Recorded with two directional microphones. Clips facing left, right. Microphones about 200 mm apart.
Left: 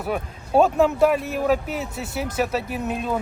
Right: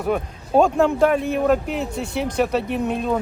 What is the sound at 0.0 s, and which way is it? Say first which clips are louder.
Speech: right 4 dB; 5° left (ahead or behind).